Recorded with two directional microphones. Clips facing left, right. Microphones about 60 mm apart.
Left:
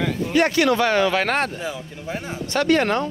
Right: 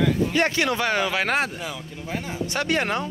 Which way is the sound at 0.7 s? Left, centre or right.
Centre.